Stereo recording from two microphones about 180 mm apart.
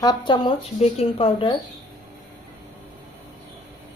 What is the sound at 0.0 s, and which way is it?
Speech, 25° left (ahead or behind).